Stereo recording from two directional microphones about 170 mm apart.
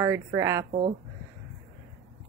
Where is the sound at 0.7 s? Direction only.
40° right (ahead or behind).